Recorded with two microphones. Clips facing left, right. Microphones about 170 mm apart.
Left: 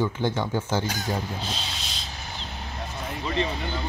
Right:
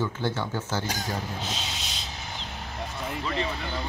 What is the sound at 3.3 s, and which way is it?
Speech, 20° left (ahead or behind).